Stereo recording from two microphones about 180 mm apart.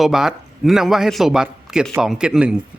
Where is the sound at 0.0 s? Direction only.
Centre (ahead or behind).